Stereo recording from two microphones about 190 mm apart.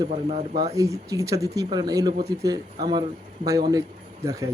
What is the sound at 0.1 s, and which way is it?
Speech, 35° right (ahead or behind).